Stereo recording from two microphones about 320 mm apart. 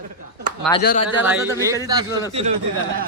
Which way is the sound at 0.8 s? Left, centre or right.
Left.